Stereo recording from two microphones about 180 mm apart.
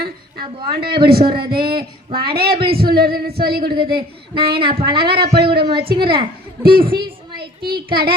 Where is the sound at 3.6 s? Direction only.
25° right (ahead or behind).